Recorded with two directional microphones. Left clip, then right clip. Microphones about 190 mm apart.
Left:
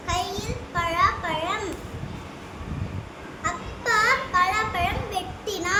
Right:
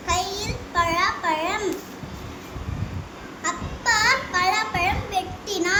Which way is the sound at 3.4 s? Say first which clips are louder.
Right 3 dB; 15° left (ahead or behind).